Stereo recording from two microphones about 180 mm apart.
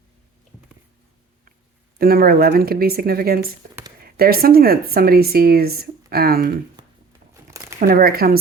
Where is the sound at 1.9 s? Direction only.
55° right (ahead or behind).